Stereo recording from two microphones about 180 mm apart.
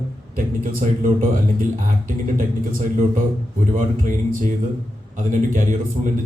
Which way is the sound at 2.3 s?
50° right (ahead or behind).